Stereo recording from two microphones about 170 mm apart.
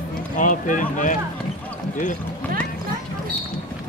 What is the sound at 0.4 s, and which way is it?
Speech, 50° left (ahead or behind).